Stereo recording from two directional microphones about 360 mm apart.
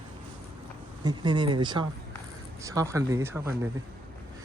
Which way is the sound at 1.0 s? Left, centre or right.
Centre.